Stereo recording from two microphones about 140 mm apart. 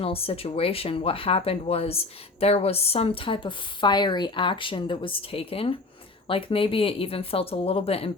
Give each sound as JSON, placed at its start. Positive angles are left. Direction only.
{"t": 0.0, "sound": "speech", "side_deg": 45}